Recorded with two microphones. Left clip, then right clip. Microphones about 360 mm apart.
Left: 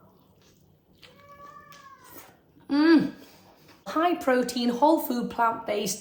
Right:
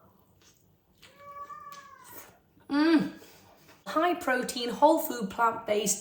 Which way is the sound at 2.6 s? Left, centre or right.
Centre.